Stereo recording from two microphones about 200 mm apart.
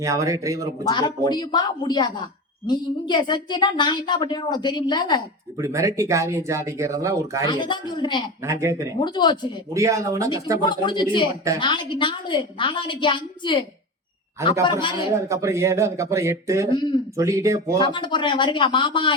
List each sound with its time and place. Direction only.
0.0 s speech: 15° right (ahead or behind)
0.9 s a woman's voice: 20° left (ahead or behind)
5.5 s speech: 15° right (ahead or behind)
7.4 s a woman's voice: 20° left (ahead or behind)
8.4 s speech: 15° right (ahead or behind)
9.0 s a woman's voice: 20° left (ahead or behind)
9.7 s speech: 15° right (ahead or behind)
10.6 s a woman's voice: 20° left (ahead or behind)
15.1 s speech: 15° right (ahead or behind)
17.7 s a woman's voice: 25° left (ahead or behind)